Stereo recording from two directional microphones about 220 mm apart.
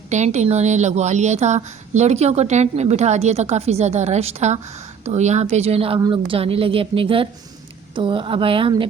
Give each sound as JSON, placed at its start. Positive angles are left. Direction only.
{"t": 0.1, "sound": "speech", "side_deg": -30}